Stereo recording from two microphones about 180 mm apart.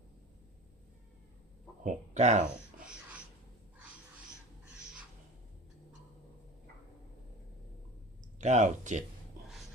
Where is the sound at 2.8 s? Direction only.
5° right (ahead or behind).